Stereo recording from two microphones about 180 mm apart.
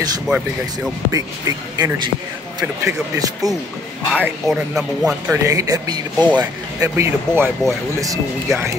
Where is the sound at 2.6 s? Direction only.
15° right (ahead or behind).